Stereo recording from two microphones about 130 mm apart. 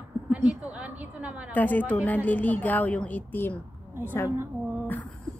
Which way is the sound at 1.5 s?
15° left (ahead or behind).